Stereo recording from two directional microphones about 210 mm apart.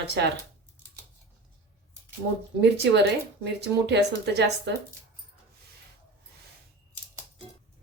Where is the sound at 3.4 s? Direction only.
55° right (ahead or behind).